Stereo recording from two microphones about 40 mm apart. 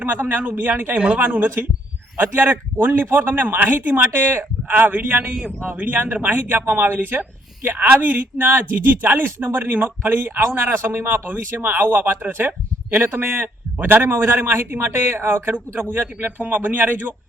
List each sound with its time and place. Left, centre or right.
0.0 s speech: right
4.8 s speech: right
11.3 s a man's voice: right